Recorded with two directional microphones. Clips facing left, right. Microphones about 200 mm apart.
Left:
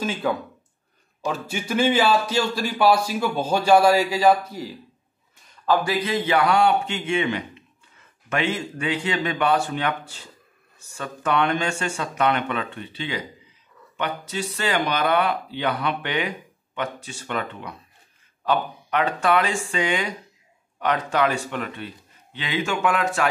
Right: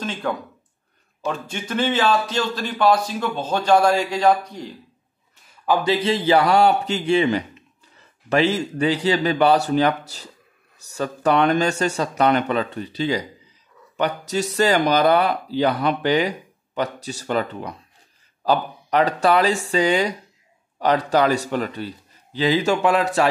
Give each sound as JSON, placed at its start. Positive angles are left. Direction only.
{"t": 0.0, "sound": "speech", "side_deg": 10}
{"t": 5.7, "sound": "speech", "side_deg": -25}